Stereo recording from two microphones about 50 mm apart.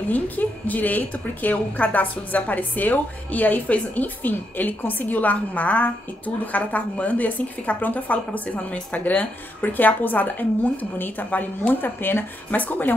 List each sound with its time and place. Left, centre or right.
0.1 s a woman's voice: left
11.7 s a woman's voice: left